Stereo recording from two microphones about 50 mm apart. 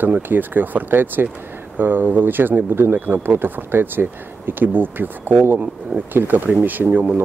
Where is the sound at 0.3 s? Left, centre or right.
Right.